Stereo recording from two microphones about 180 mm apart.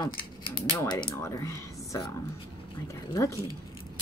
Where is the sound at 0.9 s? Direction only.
20° left (ahead or behind).